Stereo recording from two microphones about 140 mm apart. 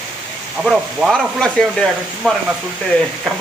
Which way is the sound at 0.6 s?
Centre (ahead or behind).